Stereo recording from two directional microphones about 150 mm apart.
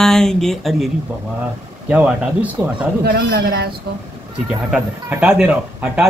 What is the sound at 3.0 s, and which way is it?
Speech, 90° right.